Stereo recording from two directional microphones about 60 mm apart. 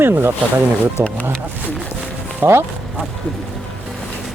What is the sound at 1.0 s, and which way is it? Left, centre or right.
Wild animals, right.